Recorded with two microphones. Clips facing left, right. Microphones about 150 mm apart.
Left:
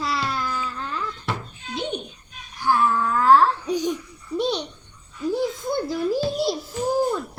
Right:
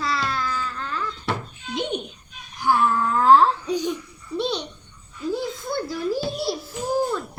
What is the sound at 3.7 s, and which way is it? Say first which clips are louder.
Babbling: left 1 dB; 10° left (ahead or behind).